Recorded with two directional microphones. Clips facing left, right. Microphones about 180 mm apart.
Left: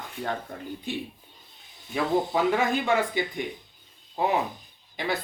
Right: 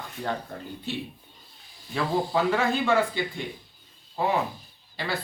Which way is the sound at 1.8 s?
20° left (ahead or behind).